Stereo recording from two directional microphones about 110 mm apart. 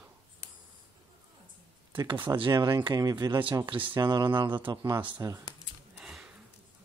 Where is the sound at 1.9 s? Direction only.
45° right (ahead or behind).